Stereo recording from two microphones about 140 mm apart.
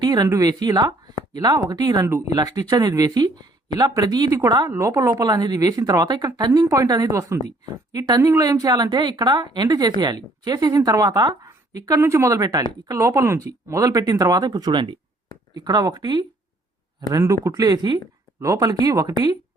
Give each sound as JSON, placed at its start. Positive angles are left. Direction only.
{"t": 0.0, "sound": "speech", "side_deg": -30}